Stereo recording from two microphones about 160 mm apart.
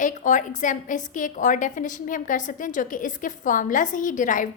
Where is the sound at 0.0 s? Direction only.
50° left (ahead or behind).